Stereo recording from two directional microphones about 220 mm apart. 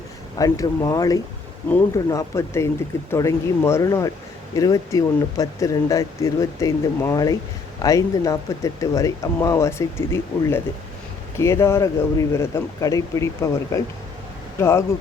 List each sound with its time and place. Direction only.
0.3 s speech: 15° left (ahead or behind)